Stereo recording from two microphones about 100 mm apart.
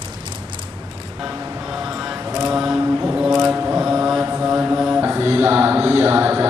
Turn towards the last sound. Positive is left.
turn(degrees=-30)  # may be behind; listen again after turning